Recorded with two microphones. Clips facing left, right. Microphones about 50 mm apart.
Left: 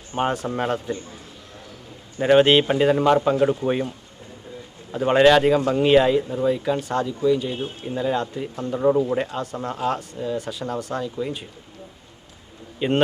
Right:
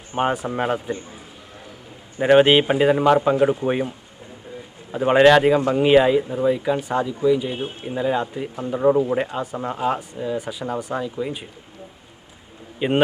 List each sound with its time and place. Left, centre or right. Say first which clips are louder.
0.1 s speech: right 2 dB; centre
12.8 s speech: right 1 dB; centre